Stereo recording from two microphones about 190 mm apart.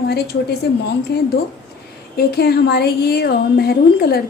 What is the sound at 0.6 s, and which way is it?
A woman's voice, 60° left (ahead or behind).